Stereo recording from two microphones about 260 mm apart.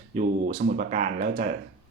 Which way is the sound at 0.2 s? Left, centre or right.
Right.